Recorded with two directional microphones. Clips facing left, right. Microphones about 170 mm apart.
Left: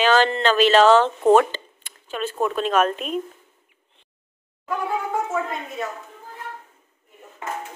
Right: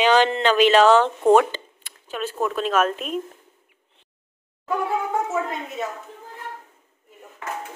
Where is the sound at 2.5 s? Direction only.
5° right (ahead or behind).